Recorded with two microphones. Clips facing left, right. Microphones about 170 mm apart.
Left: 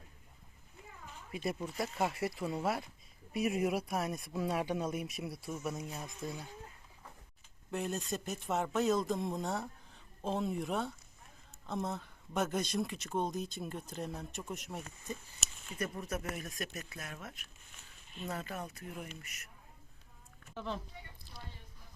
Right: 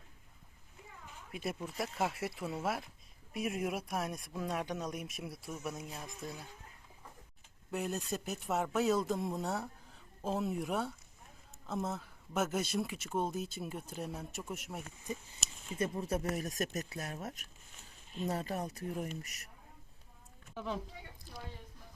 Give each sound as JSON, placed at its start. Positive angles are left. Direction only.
{"t": 1.3, "sound": "speech", "side_deg": 0}
{"t": 7.7, "sound": "speech", "side_deg": 0}
{"t": 15.7, "sound": "speech", "side_deg": -25}
{"t": 20.5, "sound": "speech", "side_deg": -5}
{"t": 21.3, "sound": "a sound", "side_deg": -45}